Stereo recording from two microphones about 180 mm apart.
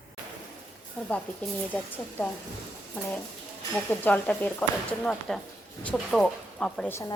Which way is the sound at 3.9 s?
10° left (ahead or behind).